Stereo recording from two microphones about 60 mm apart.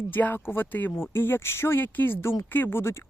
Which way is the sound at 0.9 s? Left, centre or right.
Left.